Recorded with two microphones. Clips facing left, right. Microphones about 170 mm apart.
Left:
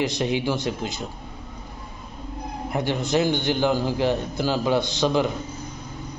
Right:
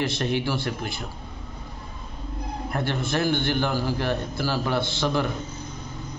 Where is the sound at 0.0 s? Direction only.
15° left (ahead or behind).